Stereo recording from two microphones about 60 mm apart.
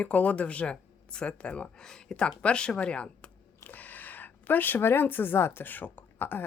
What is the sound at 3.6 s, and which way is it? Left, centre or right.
Speech, left.